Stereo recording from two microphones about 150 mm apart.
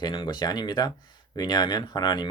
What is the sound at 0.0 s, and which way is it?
Speech, 30° left (ahead or behind).